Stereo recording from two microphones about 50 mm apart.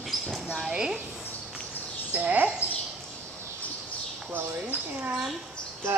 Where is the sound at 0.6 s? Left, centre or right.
Centre.